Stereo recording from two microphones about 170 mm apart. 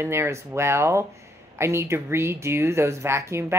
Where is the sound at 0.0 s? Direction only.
15° right (ahead or behind).